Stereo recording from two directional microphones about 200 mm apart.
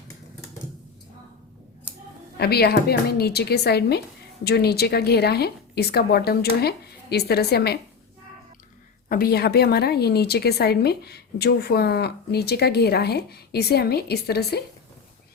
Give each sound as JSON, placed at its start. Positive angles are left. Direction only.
{"t": 2.4, "sound": "a woman's voice", "side_deg": 50}
{"t": 9.0, "sound": "a woman's voice", "side_deg": 45}